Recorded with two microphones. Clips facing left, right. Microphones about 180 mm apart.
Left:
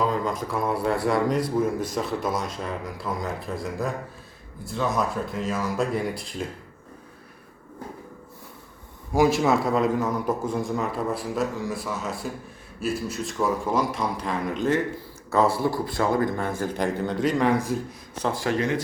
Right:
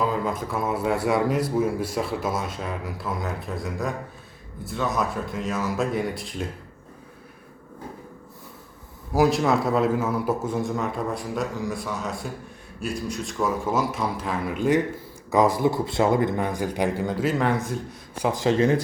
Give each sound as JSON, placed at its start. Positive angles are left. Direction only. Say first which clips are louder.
{"t": 0.0, "sound": "a man's voice", "louder": "even", "side_deg": -5}
{"t": 9.1, "sound": "a man's voice", "louder": "even", "side_deg": 0}
{"t": 18.1, "sound": "speech", "louder": "right 3 dB", "side_deg": -15}